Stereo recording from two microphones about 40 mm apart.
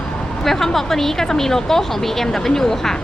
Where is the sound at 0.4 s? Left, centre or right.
Centre.